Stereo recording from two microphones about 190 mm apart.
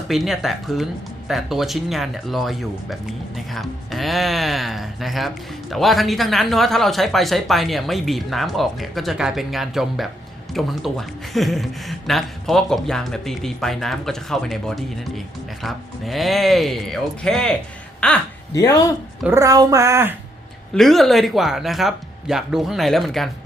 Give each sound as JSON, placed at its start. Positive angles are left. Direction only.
{"t": 0.1, "sound": "speech", "side_deg": 0}
{"t": 18.5, "sound": "speech", "side_deg": 20}
{"t": 19.2, "sound": "a woman's voice", "side_deg": -15}
{"t": 20.7, "sound": "speech", "side_deg": 0}